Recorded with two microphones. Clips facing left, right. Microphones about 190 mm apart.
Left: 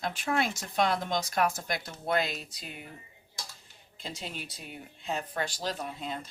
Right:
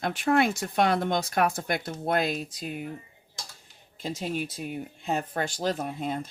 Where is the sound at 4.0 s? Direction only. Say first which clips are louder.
Right 9 dB; 50° right (ahead or behind).